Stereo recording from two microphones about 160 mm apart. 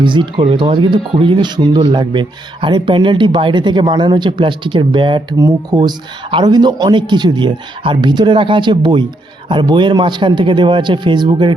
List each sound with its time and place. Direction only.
0.0 s speech: 30° right (ahead or behind)